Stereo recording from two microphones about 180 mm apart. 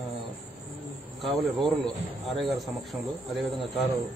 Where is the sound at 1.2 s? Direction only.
Centre (ahead or behind).